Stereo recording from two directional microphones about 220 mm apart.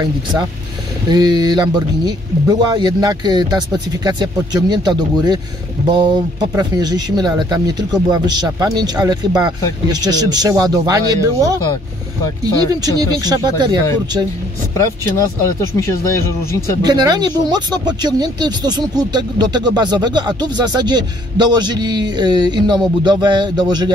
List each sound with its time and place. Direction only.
1.1 s speech: 20° right (ahead or behind)
6.5 s speech: 15° right (ahead or behind)
12.8 s speech: 15° right (ahead or behind)
14.8 s speech: 15° left (ahead or behind)
16.8 s speech: 20° right (ahead or behind)